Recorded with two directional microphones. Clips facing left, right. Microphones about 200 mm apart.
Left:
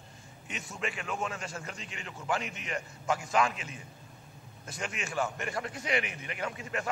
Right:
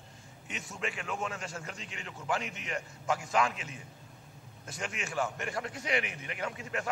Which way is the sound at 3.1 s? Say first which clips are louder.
Left 1 dB; 15° left (ahead or behind).